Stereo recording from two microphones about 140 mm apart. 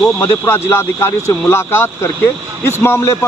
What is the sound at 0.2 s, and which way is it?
Speech, 15° left (ahead or behind).